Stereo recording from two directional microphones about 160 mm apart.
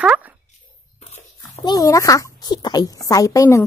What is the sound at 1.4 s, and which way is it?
A woman's voice, 25° left (ahead or behind).